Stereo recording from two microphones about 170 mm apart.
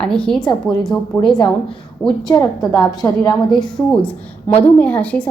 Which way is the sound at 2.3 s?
20° left (ahead or behind).